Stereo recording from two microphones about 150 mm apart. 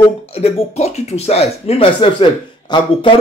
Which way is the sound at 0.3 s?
45° left (ahead or behind).